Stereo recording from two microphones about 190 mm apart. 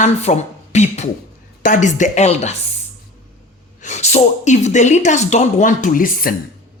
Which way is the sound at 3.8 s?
35° left (ahead or behind).